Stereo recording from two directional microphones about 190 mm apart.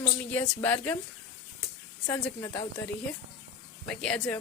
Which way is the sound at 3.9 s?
5° left (ahead or behind).